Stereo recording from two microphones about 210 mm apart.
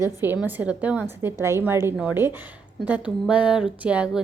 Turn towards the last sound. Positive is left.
turn(degrees=-5)  # may be behind; listen again after turning